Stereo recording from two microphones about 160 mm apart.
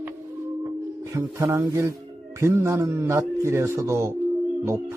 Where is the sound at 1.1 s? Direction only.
15° right (ahead or behind).